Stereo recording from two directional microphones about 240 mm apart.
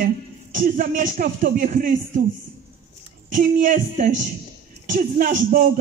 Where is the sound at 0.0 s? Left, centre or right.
Right.